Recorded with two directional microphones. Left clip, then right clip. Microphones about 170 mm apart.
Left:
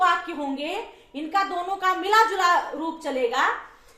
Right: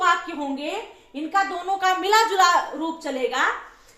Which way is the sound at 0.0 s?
15° right (ahead or behind).